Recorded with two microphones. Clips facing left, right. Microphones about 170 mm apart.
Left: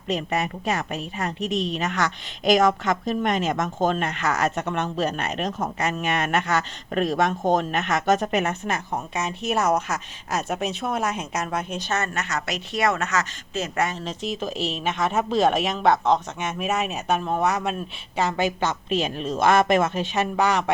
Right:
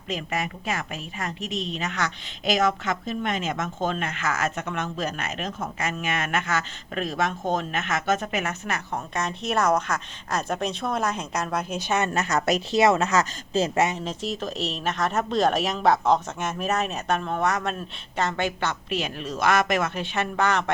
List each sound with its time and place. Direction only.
0.1 s a woman's voice: 35° left (ahead or behind)
1.8 s a woman's voice: 45° left (ahead or behind)
9.1 s speech: 5° left (ahead or behind)
11.8 s a woman's voice: 15° right (ahead or behind)
12.1 s a woman's voice: 35° right (ahead or behind)
12.7 s speech: 25° right (ahead or behind)
14.0 s a woman's voice: 5° right (ahead or behind); by 20.7 s 10° left (ahead or behind)